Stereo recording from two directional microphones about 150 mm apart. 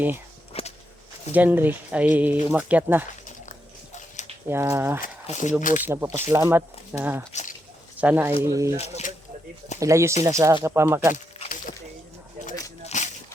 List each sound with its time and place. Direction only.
0.5 s whip: 40° left (ahead or behind)
1.3 s speech: 10° right (ahead or behind)
3.2 s a sound: 55° left (ahead or behind)
4.4 s speech: 15° right (ahead or behind)
5.3 s speech: 55° left (ahead or behind)
5.8 s speech: 15° right (ahead or behind)
8.8 s speech: 50° left (ahead or behind)
9.8 s speech: 20° right (ahead or behind)
12.8 s a sound: 50° left (ahead or behind)